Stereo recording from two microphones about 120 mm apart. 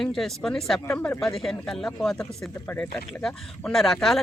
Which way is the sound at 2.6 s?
15° left (ahead or behind).